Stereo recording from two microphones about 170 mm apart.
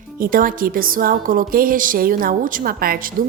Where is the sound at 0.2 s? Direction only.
55° right (ahead or behind).